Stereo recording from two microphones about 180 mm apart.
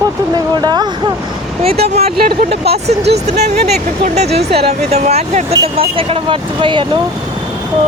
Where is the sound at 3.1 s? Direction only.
60° right (ahead or behind).